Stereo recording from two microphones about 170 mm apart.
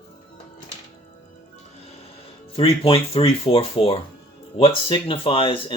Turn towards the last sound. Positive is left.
turn(degrees=30)  # may be behind; listen again after turning